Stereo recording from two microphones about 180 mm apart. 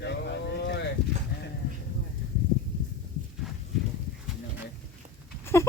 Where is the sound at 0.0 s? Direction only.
70° left (ahead or behind).